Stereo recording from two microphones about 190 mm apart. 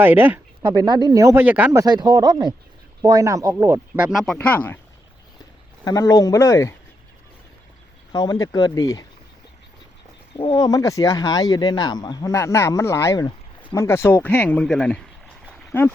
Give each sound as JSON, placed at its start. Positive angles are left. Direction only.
{"t": 0.0, "sound": "speech", "side_deg": -10}
{"t": 5.8, "sound": "speech", "side_deg": 20}
{"t": 8.1, "sound": "speech", "side_deg": 20}
{"t": 10.4, "sound": "speech", "side_deg": 25}
{"t": 15.4, "sound": "a sound", "side_deg": 0}